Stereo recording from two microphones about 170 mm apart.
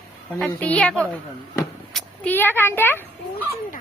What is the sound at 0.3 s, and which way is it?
A woman's voice, 10° left (ahead or behind).